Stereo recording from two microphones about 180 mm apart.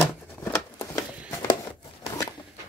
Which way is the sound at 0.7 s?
20° left (ahead or behind).